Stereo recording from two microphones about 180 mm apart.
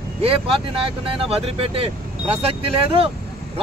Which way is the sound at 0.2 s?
30° right (ahead or behind).